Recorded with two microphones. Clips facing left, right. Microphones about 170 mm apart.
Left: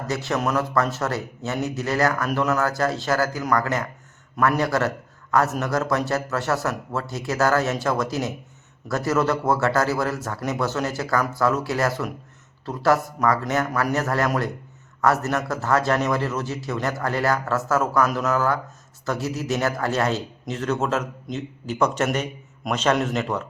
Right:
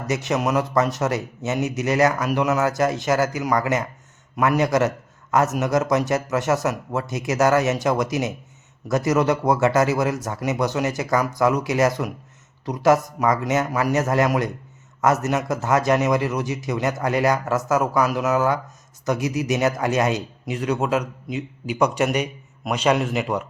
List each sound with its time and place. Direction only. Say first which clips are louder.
0.1 s speech: right 2 dB; 20° right (ahead or behind)